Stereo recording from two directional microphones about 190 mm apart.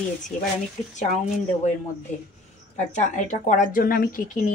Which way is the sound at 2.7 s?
40° left (ahead or behind).